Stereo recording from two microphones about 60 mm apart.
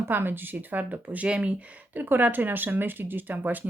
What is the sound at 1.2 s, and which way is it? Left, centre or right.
Speech, centre.